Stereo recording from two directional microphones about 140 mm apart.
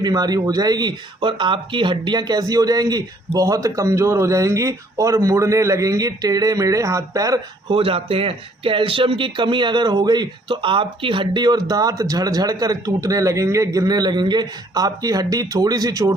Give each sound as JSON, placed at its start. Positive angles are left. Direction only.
{"t": 0.0, "sound": "speech", "side_deg": -30}
{"t": 7.7, "sound": "speech", "side_deg": -40}